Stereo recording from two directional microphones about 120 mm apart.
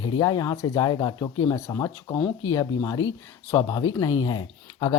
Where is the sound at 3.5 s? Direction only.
35° left (ahead or behind).